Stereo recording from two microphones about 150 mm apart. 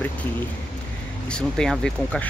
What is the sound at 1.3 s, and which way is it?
Speech, 5° left (ahead or behind).